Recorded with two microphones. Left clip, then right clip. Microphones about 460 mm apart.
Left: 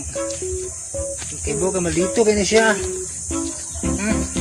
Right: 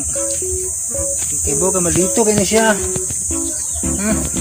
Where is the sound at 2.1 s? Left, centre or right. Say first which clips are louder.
Left 1 dB; left.